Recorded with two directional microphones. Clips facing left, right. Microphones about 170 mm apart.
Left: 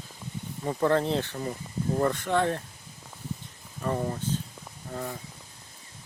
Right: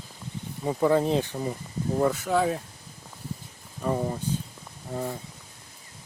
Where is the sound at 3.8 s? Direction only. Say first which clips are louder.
Right 2 dB; 10° right (ahead or behind).